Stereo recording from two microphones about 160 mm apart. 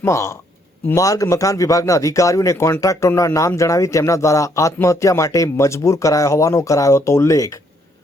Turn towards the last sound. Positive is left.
turn(degrees=20)  # may be behind; listen again after turning